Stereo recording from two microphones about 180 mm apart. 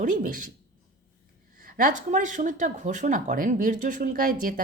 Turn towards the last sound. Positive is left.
turn(degrees=-50)  # may be behind; listen again after turning